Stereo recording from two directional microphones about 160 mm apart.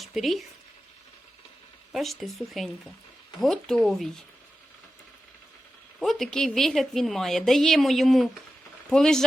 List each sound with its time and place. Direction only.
0.0 s speech: centre (ahead or behind)
1.9 s a woman's voice: centre (ahead or behind)
6.0 s a woman's voice: centre (ahead or behind)